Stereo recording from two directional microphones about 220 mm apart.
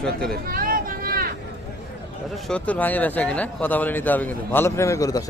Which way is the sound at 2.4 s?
5° left (ahead or behind).